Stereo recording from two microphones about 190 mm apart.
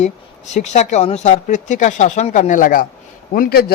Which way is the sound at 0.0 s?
35° left (ahead or behind).